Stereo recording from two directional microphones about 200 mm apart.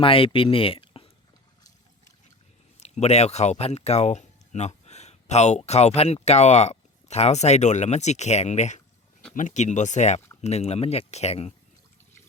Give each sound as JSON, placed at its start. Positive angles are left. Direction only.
{"t": 0.0, "sound": "speech", "side_deg": 25}
{"t": 2.8, "sound": "speech", "side_deg": 35}